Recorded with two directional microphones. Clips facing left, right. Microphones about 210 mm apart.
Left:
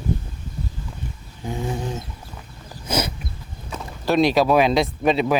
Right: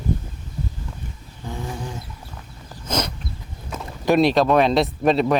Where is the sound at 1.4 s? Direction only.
20° left (ahead or behind).